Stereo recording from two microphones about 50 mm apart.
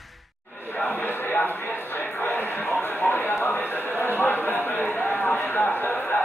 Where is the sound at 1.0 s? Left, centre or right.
Left.